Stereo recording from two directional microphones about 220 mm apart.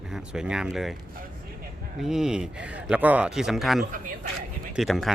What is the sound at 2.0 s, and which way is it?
Speech, centre (ahead or behind).